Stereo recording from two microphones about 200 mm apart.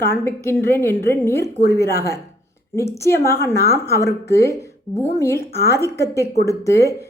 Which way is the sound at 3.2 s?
10° left (ahead or behind).